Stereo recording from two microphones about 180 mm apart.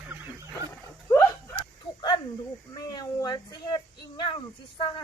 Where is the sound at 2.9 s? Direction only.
25° left (ahead or behind).